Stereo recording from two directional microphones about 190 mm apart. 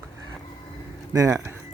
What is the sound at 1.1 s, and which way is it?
Speech, 15° right (ahead or behind).